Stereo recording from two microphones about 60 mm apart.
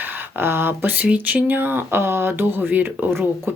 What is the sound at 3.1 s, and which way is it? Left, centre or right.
Speech, right.